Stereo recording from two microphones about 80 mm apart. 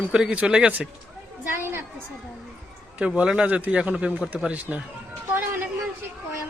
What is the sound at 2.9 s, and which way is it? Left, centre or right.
A man's voice, centre.